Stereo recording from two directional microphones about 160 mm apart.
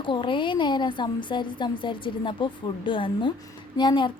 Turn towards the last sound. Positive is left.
turn(degrees=30)  # may be behind; listen again after turning